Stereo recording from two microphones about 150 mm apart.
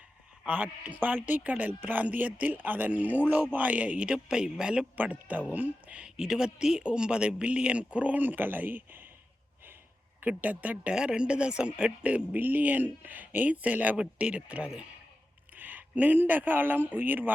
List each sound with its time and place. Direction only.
0.4 s speech: 10° right (ahead or behind)
10.2 s speech: 10° right (ahead or behind)